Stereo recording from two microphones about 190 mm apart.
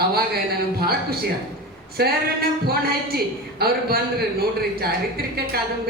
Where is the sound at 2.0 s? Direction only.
55° right (ahead or behind).